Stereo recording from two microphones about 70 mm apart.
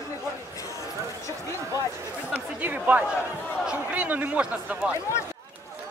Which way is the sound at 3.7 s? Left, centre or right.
Centre.